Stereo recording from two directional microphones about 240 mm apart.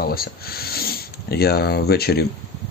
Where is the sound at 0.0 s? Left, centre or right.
Left.